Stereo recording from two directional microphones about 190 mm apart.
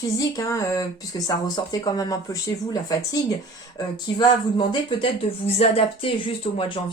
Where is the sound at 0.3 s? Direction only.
15° left (ahead or behind).